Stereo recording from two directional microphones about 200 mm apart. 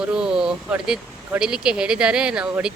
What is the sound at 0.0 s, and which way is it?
Speech, 5° right (ahead or behind).